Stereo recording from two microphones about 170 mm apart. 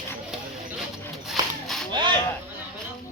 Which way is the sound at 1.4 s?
25° right (ahead or behind).